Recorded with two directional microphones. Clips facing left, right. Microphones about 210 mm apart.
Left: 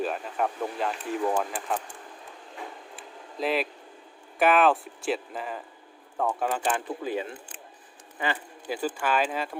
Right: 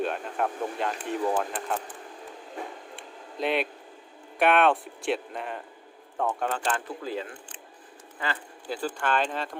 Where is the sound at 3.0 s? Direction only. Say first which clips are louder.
Even; centre (ahead or behind).